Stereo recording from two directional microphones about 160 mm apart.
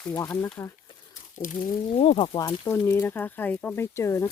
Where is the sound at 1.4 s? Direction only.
55° left (ahead or behind); by 2.3 s 40° left (ahead or behind).